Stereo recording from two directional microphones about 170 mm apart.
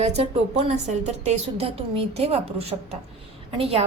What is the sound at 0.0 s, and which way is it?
A woman's voice, 40° right (ahead or behind).